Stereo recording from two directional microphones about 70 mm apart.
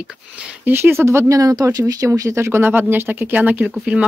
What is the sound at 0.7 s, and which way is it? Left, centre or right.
Speech, right.